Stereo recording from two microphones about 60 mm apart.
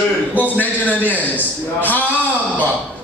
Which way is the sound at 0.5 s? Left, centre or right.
Left.